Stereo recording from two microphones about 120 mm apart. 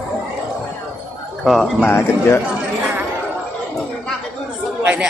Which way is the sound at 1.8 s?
20° left (ahead or behind).